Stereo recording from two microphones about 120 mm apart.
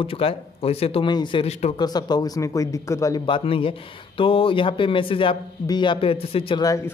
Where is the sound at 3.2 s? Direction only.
45° left (ahead or behind).